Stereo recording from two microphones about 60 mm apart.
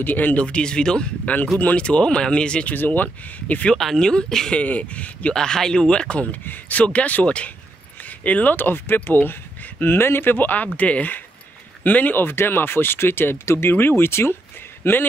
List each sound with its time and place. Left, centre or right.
0.0 s speech: left
2.7 s speech: left
3.7 s speech: centre
4.6 s speech: left
5.3 s speech: centre; by 15.0 s left